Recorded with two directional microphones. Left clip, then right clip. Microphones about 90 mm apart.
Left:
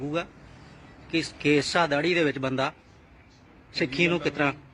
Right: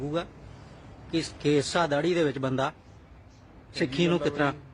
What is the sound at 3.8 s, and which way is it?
Speech, 25° right (ahead or behind).